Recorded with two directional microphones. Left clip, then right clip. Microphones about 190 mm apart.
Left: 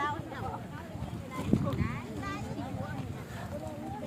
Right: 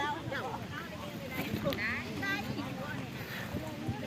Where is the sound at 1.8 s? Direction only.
55° left (ahead or behind).